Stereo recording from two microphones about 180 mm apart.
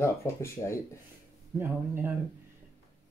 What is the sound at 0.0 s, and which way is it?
Speech, 15° left (ahead or behind).